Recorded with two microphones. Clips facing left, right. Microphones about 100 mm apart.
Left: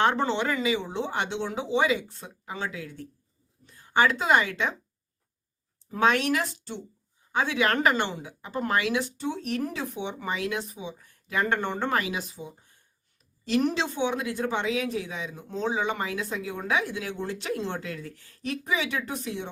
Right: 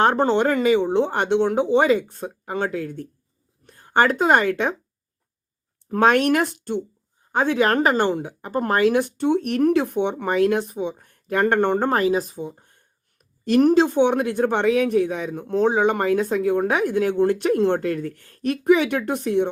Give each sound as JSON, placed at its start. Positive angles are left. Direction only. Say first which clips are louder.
{"t": 0.0, "sound": "a woman's voice", "louder": "right 7 dB", "side_deg": -45}
{"t": 5.9, "sound": "speech", "louder": "right 6 dB", "side_deg": -50}
{"t": 11.9, "sound": "a woman's voice", "louder": "right 8 dB", "side_deg": -40}